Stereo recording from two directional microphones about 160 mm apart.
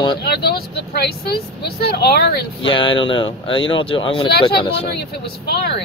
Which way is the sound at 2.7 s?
30° left (ahead or behind).